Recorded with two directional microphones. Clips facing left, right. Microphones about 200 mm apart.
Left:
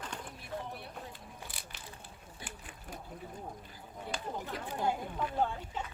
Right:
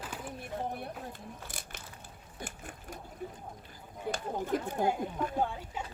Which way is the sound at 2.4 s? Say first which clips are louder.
Right 5 dB; 45° right (ahead or behind).